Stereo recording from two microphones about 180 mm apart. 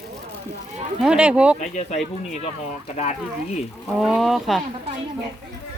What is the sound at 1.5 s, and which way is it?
Speech, 40° left (ahead or behind).